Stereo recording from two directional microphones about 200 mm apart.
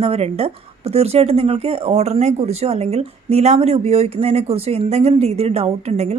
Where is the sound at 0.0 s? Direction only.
30° right (ahead or behind).